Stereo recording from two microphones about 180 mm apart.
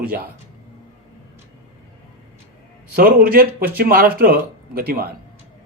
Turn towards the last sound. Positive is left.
turn(degrees=-55)  # may be behind; listen again after turning